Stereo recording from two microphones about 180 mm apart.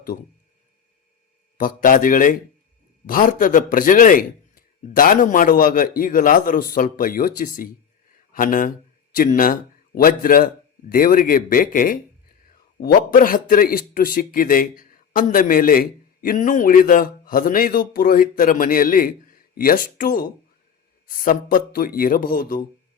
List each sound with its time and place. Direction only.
1.5 s a man's voice: 50° left (ahead or behind)